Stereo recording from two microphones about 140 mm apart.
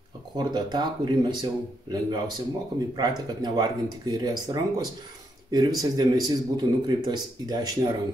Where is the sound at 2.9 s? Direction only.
30° right (ahead or behind).